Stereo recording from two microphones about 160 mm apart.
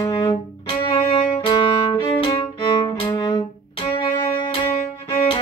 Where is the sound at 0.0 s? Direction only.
25° left (ahead or behind).